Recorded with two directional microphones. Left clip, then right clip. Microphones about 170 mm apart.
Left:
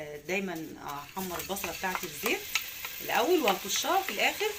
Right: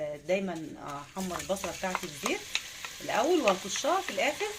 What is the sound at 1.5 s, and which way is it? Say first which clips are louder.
Stir: right 7 dB; 75° right (ahead or behind).